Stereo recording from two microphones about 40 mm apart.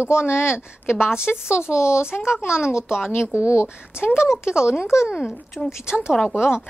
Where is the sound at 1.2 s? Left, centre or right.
Left.